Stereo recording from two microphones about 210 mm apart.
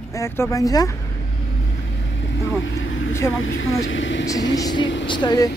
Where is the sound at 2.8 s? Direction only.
70° left (ahead or behind).